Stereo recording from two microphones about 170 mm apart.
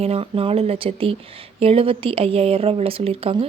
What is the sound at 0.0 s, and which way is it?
A woman's voice, 35° right (ahead or behind).